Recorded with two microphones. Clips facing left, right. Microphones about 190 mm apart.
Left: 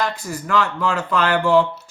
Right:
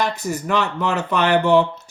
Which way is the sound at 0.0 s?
20° right (ahead or behind).